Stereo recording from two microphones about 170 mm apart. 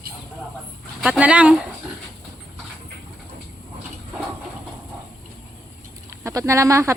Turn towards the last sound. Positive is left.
turn(degrees=-15)  # may be behind; listen again after turning